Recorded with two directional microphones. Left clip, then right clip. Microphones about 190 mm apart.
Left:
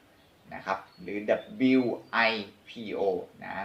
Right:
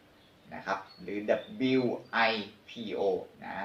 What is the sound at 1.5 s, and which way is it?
Speech, 30° left (ahead or behind).